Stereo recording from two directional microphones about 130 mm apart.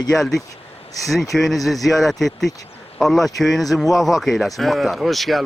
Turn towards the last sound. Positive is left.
turn(degrees=0)  # may be behind; listen again after turning